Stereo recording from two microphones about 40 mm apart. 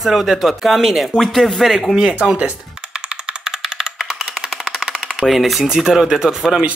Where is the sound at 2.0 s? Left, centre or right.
Right.